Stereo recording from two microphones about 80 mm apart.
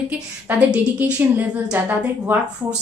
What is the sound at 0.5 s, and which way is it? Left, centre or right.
A woman's voice, right.